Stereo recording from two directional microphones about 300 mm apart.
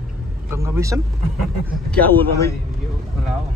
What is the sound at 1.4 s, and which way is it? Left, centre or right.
Speech, centre.